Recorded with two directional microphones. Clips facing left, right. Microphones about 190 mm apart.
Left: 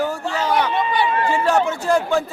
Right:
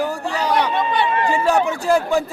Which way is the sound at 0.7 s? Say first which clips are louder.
Even; centre (ahead or behind).